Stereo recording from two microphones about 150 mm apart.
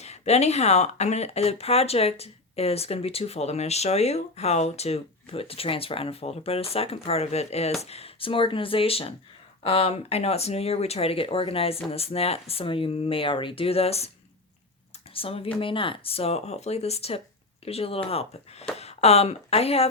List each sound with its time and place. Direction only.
0.0 s speech: 45° left (ahead or behind)
15.1 s speech: 40° left (ahead or behind)